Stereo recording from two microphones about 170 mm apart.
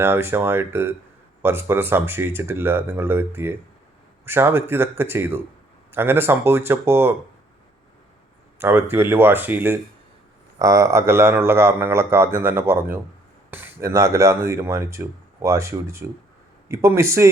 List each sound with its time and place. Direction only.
0.0 s speech: 15° right (ahead or behind)
8.5 s speech: 15° right (ahead or behind)